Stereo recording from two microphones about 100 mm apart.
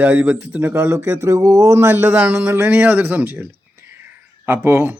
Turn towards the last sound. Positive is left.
turn(degrees=-25)  # may be behind; listen again after turning